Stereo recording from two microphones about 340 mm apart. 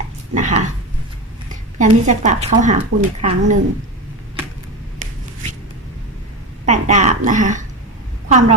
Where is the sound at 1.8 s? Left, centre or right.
Right.